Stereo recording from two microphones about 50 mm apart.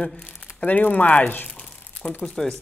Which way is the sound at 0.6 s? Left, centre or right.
Left.